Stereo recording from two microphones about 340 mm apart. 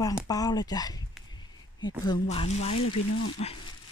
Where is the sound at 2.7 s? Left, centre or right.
Left.